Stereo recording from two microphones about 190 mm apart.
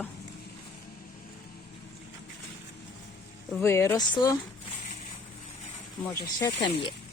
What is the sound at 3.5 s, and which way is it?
Speech, 15° left (ahead or behind).